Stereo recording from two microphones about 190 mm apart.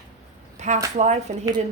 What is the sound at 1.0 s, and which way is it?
Speech, 35° right (ahead or behind).